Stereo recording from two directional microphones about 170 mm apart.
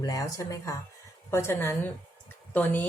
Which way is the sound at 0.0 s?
20° left (ahead or behind).